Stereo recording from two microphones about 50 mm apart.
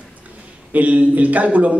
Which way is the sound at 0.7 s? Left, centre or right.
Right.